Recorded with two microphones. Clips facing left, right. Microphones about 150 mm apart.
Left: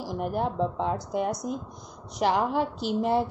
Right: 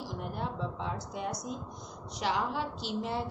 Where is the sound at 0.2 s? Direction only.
50° left (ahead or behind).